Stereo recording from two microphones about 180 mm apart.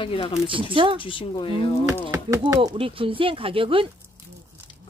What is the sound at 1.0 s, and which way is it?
Speech, 30° left (ahead or behind).